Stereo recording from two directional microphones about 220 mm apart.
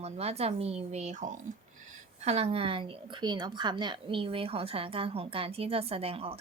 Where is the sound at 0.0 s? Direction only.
30° right (ahead or behind).